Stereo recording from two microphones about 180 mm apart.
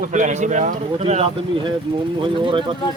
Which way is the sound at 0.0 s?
45° right (ahead or behind).